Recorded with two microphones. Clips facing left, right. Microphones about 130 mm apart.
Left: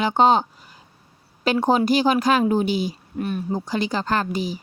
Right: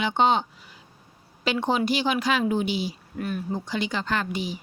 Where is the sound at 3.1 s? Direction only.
25° left (ahead or behind).